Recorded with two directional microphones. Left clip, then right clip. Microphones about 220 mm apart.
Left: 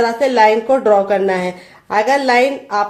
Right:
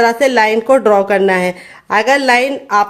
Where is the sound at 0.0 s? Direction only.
35° right (ahead or behind).